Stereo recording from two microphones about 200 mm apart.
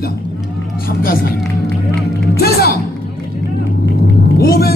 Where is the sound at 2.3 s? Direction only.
50° left (ahead or behind).